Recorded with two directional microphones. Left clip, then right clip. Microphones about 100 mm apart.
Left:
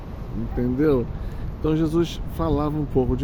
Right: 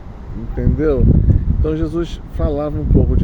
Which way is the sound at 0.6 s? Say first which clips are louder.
Right 3 dB; 15° left (ahead or behind).